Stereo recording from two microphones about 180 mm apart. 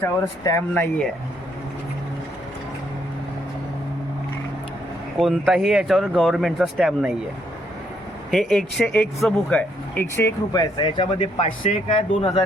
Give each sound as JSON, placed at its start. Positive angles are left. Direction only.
{"t": 0.0, "sound": "speech", "side_deg": 15}
{"t": 5.2, "sound": "speech", "side_deg": 0}
{"t": 8.3, "sound": "speech", "side_deg": 0}